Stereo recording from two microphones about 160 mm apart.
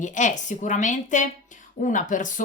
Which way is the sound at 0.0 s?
50° left (ahead or behind).